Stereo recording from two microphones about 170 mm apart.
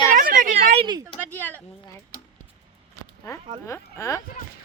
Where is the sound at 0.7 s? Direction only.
30° right (ahead or behind).